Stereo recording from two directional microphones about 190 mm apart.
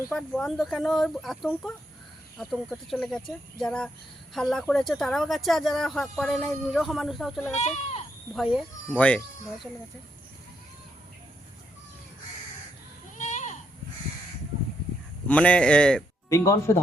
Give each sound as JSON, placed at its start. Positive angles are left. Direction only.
{"t": 0.1, "sound": "speech", "side_deg": 5}
{"t": 7.5, "sound": "speech", "side_deg": 35}
{"t": 8.3, "sound": "speech", "side_deg": 0}
{"t": 13.1, "sound": "goat", "side_deg": 40}
{"t": 15.3, "sound": "speech", "side_deg": 5}